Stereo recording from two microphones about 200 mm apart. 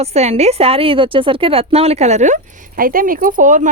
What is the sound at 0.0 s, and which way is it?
A woman's voice, 30° right (ahead or behind).